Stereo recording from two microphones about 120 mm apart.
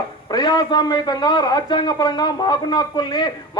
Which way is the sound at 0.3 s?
35° left (ahead or behind).